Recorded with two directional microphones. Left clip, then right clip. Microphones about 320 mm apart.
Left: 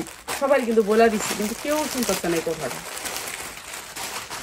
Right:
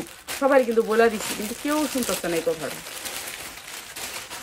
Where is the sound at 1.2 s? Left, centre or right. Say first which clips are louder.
Left 3 dB; centre.